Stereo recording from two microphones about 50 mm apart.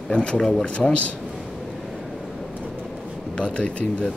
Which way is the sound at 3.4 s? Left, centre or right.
Left.